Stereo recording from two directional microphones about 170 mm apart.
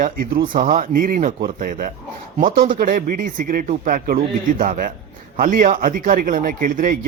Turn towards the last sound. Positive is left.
turn(degrees=-55)  # may be behind; listen again after turning